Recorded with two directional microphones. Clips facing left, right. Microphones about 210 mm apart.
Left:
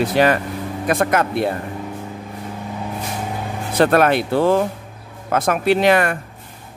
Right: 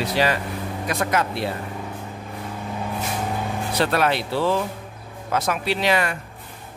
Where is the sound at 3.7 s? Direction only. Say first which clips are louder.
Left 7 dB; 50° left (ahead or behind).